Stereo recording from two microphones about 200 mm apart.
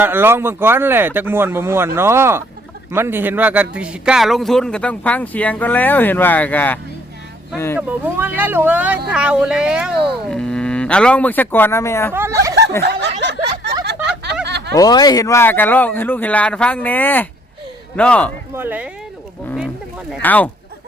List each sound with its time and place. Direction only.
0.0 s speech: 10° right (ahead or behind); by 7.8 s 10° left (ahead or behind)
7.8 s speech: 10° right (ahead or behind); by 12.1 s 15° left (ahead or behind)
12.1 s speech: 15° right (ahead or behind)
12.8 s snicker: 55° right (ahead or behind)
13.8 s a sound: 60° right (ahead or behind)
14.4 s snicker: 55° right (ahead or behind)
14.8 s speech: 20° left (ahead or behind)
18.5 s speech: 10° right (ahead or behind)
19.5 s a sound: 5° right (ahead or behind)
20.2 s speech: 10° left (ahead or behind)